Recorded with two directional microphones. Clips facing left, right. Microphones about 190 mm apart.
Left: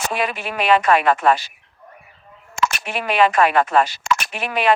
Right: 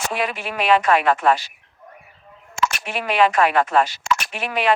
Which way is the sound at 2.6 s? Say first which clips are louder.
Left 1 dB; 60° left (ahead or behind).